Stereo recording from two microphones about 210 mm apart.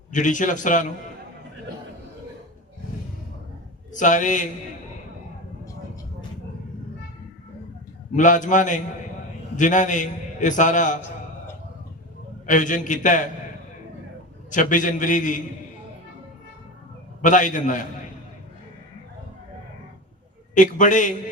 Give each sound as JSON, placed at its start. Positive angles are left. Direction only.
{"t": 0.1, "sound": "a man's voice", "side_deg": 35}
{"t": 3.9, "sound": "a man's voice", "side_deg": 35}
{"t": 8.1, "sound": "a man's voice", "side_deg": 35}
{"t": 12.5, "sound": "a man's voice", "side_deg": 35}
{"t": 14.5, "sound": "a man's voice", "side_deg": 40}
{"t": 17.2, "sound": "a man's voice", "side_deg": 35}
{"t": 20.6, "sound": "a man's voice", "side_deg": 35}